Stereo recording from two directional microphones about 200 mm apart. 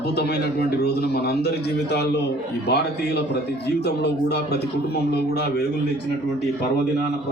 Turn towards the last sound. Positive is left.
turn(degrees=55)  # may be behind; listen again after turning